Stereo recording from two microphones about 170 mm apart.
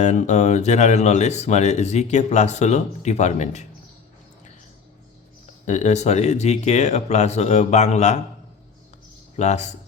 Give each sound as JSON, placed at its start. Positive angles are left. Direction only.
{"t": 0.0, "sound": "speech", "side_deg": 45}
{"t": 5.6, "sound": "speech", "side_deg": 45}
{"t": 9.3, "sound": "speech", "side_deg": 40}